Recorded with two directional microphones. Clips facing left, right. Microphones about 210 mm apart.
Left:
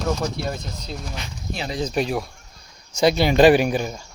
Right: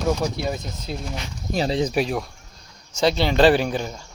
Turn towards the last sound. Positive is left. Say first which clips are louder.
# left 3 dB
turn(degrees=15)  # may be behind; listen again after turning